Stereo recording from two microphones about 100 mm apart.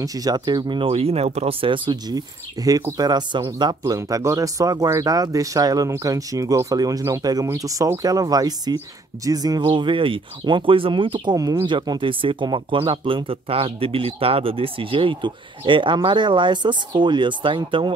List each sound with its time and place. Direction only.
0.0 s speech: 35° right (ahead or behind)
0.8 s speech: 85° right; by 9.6 s 40° right (ahead or behind)
9.6 s speech: 55° right (ahead or behind)